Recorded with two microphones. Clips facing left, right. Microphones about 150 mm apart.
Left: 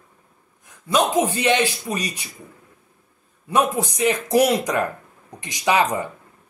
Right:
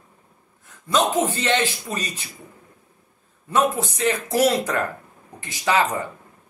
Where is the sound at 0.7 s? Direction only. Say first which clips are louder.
Left 1 dB; 15° left (ahead or behind).